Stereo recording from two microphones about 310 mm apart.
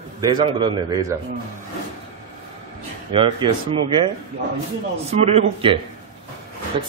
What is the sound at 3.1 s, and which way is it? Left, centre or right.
A man's voice, centre.